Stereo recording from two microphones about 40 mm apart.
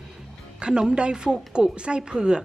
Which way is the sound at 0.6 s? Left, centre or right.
Right.